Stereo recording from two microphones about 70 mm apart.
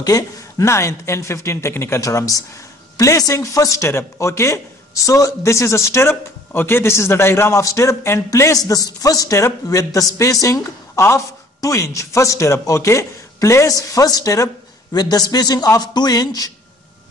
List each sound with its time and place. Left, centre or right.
0.0 s a man's voice: left
2.0 s a man's voice: left
13.7 s speech: left
14.9 s a man's voice: left
15.8 s a man's voice: left